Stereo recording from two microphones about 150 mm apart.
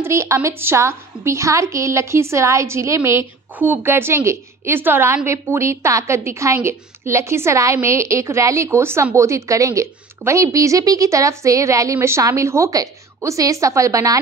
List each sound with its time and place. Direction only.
0.0 s a woman's voice: 20° right (ahead or behind)